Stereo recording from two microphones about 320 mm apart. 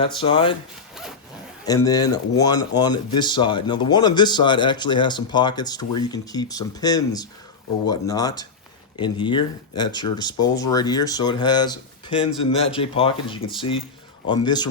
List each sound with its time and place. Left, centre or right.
0.0 s speech: centre
1.6 s speech: centre